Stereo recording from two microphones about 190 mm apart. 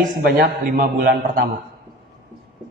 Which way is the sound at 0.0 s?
45° right (ahead or behind).